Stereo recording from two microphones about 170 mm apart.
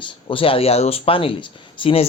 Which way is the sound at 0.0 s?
30° left (ahead or behind).